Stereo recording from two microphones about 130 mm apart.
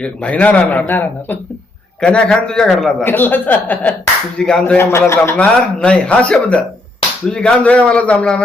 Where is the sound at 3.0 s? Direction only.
15° left (ahead or behind).